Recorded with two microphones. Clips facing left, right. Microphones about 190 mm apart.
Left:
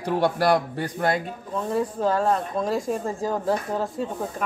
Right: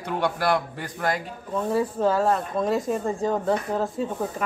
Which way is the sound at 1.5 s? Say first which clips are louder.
Right 1 dB; 5° right (ahead or behind).